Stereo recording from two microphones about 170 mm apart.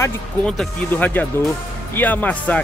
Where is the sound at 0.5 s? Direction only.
5° left (ahead or behind).